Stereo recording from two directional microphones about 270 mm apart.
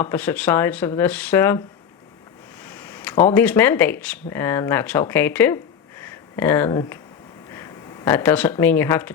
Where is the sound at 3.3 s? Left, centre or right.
Centre.